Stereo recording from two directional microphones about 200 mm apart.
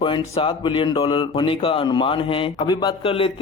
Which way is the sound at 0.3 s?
25° left (ahead or behind).